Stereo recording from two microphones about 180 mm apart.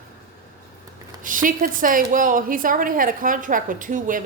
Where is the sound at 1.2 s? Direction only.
45° right (ahead or behind).